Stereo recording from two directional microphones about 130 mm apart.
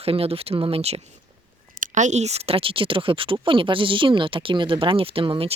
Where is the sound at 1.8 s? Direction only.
65° right (ahead or behind); by 5.5 s 45° right (ahead or behind).